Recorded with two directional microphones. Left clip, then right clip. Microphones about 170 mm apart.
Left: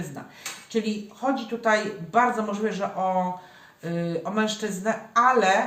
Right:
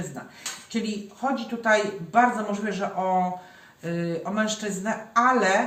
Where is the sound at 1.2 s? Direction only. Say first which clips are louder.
Left 1 dB; 35° left (ahead or behind).